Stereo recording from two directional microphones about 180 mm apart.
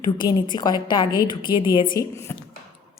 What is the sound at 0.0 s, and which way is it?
A woman's voice, 25° left (ahead or behind).